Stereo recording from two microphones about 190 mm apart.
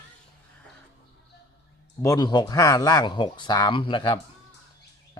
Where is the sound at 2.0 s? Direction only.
20° left (ahead or behind).